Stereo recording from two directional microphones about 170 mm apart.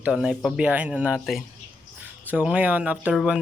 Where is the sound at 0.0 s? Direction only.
5° right (ahead or behind).